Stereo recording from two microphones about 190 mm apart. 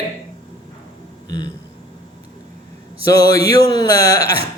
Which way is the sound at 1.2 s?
20° left (ahead or behind).